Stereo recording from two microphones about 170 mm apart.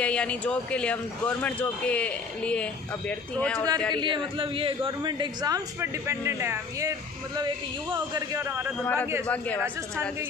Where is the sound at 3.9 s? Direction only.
30° right (ahead or behind).